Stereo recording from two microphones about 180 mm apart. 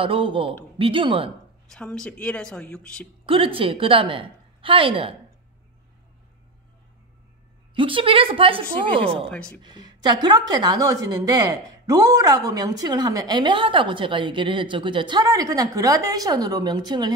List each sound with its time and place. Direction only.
0.0 s a woman's voice: 30° right (ahead or behind)
1.7 s speech: 5° left (ahead or behind)
3.3 s a woman's voice: 30° right (ahead or behind)
7.7 s a woman's voice: 30° right (ahead or behind)
9.3 s speech: 5° left (ahead or behind)
9.6 s a woman's voice: 25° right (ahead or behind)